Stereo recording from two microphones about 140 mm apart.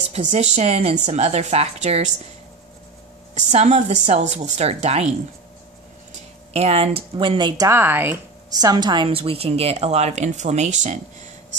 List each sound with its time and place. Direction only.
0.1 s a woman's voice: 55° right (ahead or behind)
3.5 s a woman's voice: 55° right (ahead or behind)
6.5 s speech: 45° right (ahead or behind)
7.6 s speech: 15° right (ahead or behind)
8.5 s a woman's voice: 30° right (ahead or behind); by 11.0 s 60° right (ahead or behind)